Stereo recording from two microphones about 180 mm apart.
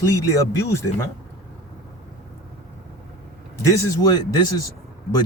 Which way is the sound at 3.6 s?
20° left (ahead or behind).